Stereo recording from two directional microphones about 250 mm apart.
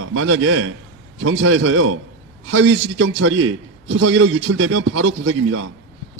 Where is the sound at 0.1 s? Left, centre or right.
Right.